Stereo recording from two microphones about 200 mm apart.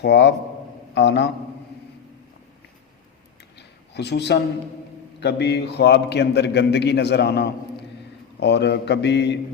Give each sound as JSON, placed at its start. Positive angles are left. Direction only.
{"t": 0.0, "sound": "a man's voice", "side_deg": 55}
{"t": 3.9, "sound": "a man's voice", "side_deg": 55}